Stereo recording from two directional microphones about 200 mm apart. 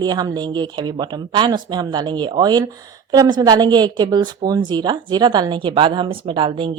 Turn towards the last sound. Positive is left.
turn(degrees=-25)  # may be behind; listen again after turning